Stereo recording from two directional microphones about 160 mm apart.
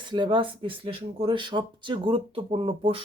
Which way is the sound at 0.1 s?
30° right (ahead or behind).